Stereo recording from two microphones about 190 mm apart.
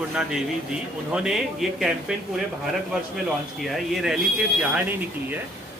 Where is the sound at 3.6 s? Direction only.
Centre (ahead or behind).